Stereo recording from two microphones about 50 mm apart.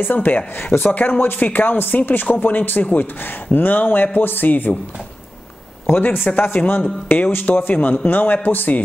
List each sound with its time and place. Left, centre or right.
0.0 s speech: left
5.9 s speech: left